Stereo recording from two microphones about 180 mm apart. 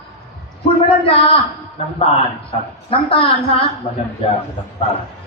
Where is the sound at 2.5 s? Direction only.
30° left (ahead or behind).